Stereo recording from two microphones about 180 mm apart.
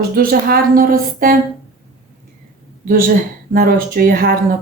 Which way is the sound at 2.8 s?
50° right (ahead or behind).